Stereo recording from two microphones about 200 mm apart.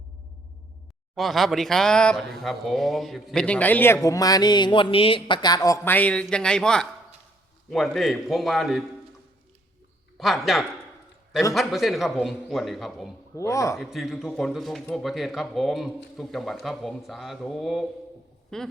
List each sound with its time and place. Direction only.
1.1 s speech: centre (ahead or behind)
10.2 s speech: centre (ahead or behind)
13.3 s speech: 15° left (ahead or behind)
13.7 s speech: centre (ahead or behind)